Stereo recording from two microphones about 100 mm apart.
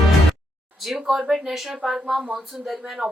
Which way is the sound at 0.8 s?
5° right (ahead or behind).